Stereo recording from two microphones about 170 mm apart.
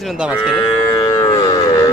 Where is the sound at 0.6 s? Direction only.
25° left (ahead or behind).